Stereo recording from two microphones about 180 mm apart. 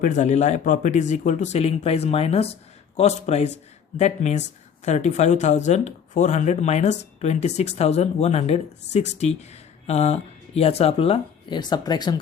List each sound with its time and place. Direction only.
0.0 s speech: 40° left (ahead or behind); by 12.2 s 25° left (ahead or behind)